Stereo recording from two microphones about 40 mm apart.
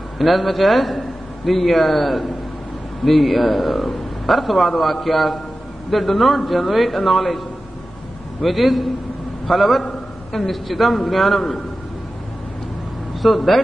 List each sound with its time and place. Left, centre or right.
0.2 s a man's voice: centre
13.2 s a man's voice: centre